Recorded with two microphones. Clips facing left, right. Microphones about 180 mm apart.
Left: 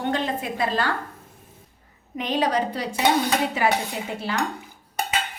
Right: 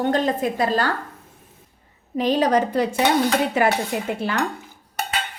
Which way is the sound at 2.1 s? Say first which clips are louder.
Right 5 dB; 40° right (ahead or behind).